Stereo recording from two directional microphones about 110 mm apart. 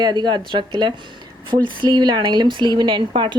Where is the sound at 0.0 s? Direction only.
40° right (ahead or behind).